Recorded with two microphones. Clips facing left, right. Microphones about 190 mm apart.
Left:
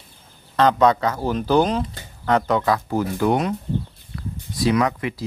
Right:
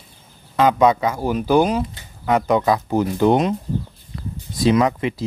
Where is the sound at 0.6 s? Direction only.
10° right (ahead or behind).